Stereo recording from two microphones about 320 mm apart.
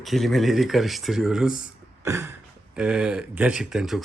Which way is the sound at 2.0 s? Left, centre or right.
Centre.